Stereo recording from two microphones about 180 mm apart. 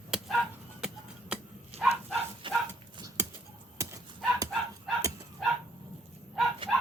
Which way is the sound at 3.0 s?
20° right (ahead or behind).